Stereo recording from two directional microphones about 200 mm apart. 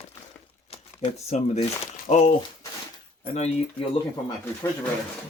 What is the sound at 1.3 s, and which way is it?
Speech, 35° left (ahead or behind).